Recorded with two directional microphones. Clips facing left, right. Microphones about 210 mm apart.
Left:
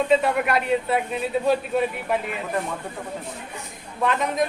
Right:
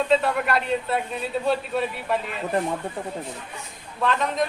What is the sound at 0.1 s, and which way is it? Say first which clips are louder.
A man's voice: left 1 dB; 5° left (ahead or behind).